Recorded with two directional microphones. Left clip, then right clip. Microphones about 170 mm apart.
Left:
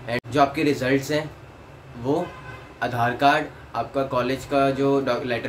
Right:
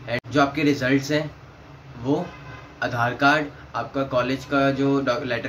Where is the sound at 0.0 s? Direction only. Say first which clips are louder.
Left 1 dB; 15° left (ahead or behind).